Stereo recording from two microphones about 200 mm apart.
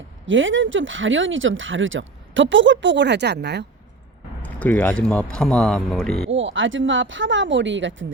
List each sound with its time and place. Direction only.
0.3 s speech: 70° right (ahead or behind)
4.4 s speech: 5° left (ahead or behind)
6.3 s speech: 70° right (ahead or behind)